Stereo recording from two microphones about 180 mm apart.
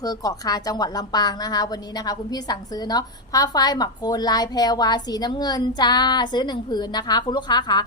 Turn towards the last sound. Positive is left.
turn(degrees=25)  # may be behind; listen again after turning